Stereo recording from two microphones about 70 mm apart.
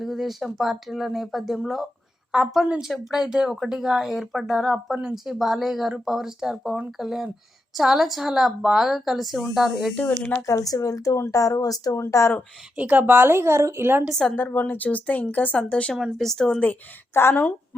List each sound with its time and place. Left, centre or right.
0.0 s speech: centre
2.6 s a woman's voice: centre
9.9 s speech: left
10.4 s speech: left
11.9 s speech: left
12.7 s a woman's voice: right
14.1 s speech: centre
14.3 s speech: left
15.7 s speech: centre
16.0 s speech: centre
17.2 s speech: left